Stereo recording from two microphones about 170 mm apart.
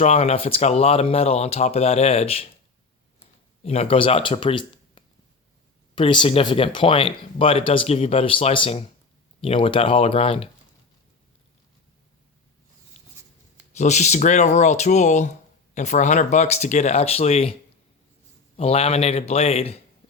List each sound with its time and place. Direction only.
0.0 s speech: 40° left (ahead or behind)
3.6 s speech: 40° left (ahead or behind)
12.9 s a sound: 40° left (ahead or behind)
13.7 s speech: 40° left (ahead or behind)
18.5 s speech: 35° left (ahead or behind)